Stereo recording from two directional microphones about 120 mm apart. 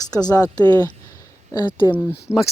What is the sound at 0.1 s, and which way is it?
Speech, 35° left (ahead or behind).